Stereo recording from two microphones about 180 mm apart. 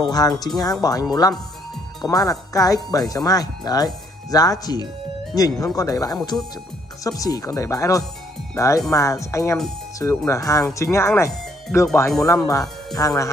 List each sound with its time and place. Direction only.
0.0 s speech: 20° left (ahead or behind)
2.0 s speech: 20° left (ahead or behind)